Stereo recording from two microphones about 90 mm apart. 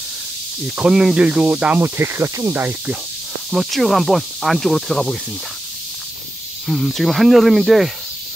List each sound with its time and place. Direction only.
0.7 s speech: 10° right (ahead or behind)
1.8 s speech: 30° right (ahead or behind)
3.4 s speech: centre (ahead or behind)
6.7 s speech: centre (ahead or behind)